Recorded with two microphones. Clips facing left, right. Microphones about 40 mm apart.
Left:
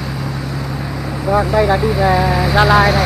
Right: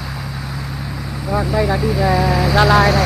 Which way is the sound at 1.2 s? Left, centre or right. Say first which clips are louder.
Left 4 dB; centre.